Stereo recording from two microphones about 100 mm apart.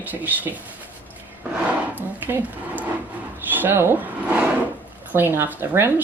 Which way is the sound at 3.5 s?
20° right (ahead or behind).